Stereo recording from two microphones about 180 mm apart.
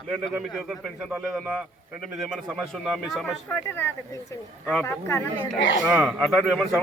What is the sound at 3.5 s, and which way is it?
Speech, 10° left (ahead or behind).